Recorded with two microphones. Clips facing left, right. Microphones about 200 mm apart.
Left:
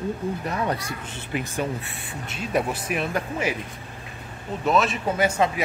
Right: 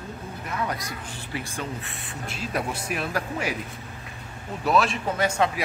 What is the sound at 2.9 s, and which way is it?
Speech, centre (ahead or behind).